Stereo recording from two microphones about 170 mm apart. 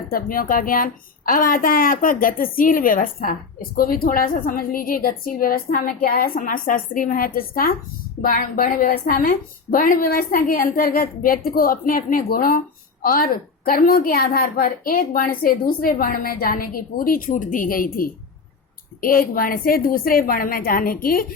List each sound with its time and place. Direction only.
0.1 s a woman's voice: 55° left (ahead or behind)